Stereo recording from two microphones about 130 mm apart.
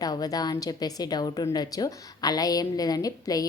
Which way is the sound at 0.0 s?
30° left (ahead or behind).